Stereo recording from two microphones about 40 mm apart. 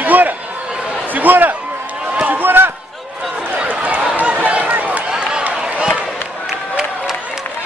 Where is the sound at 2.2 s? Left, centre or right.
Right.